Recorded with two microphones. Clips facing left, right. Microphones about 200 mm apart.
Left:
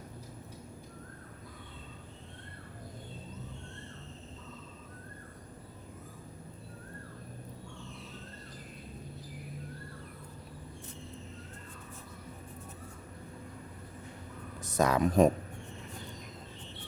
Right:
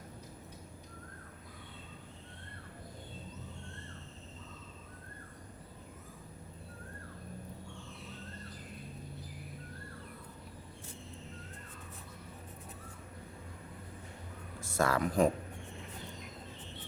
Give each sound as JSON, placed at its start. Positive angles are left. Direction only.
{"t": 14.6, "sound": "speech", "side_deg": 20}